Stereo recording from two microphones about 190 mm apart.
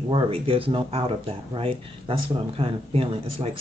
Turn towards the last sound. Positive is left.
turn(degrees=-30)  # may be behind; listen again after turning